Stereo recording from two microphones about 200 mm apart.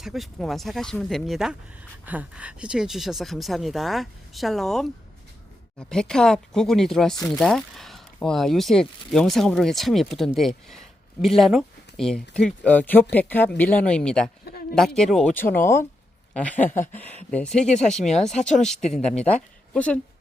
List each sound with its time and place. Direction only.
0.0 s speech: centre (ahead or behind)
14.4 s a sound: 50° left (ahead or behind)
14.8 s speech: centre (ahead or behind)
19.7 s speech: 5° left (ahead or behind)